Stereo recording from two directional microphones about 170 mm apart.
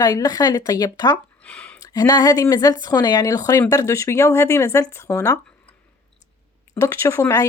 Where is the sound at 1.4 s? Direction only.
10° left (ahead or behind).